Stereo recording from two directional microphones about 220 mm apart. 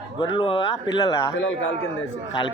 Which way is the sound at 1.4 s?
55° left (ahead or behind).